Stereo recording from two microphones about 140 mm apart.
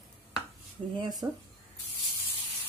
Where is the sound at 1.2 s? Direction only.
25° right (ahead or behind).